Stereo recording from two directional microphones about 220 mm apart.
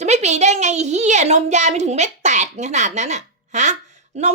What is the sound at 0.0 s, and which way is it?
A child's voice, 30° right (ahead or behind).